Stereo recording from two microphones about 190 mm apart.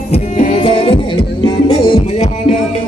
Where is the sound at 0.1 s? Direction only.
30° left (ahead or behind).